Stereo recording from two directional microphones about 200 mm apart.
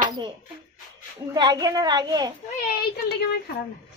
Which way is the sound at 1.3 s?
20° right (ahead or behind).